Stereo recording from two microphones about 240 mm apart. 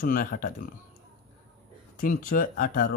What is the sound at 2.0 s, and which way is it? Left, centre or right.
Speech, left.